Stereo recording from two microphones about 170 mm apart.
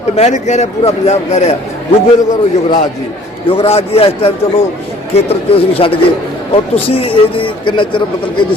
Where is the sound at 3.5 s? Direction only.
35° left (ahead or behind).